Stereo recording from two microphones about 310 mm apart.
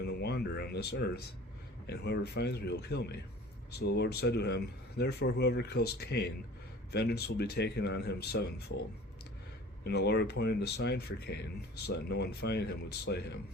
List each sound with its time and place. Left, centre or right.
0.0 s a sound: left
1.9 s speech: left
9.8 s speech: left